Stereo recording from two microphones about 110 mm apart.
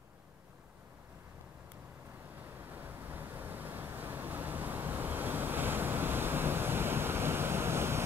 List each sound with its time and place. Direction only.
2.7 s vehicle: 15° right (ahead or behind)